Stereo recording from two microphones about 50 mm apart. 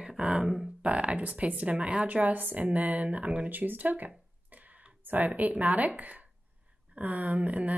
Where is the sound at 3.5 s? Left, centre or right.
Right.